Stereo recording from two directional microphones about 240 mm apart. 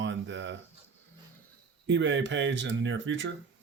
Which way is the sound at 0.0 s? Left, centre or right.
Right.